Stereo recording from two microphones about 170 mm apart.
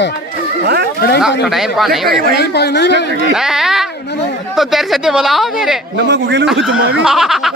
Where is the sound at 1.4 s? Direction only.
Centre (ahead or behind).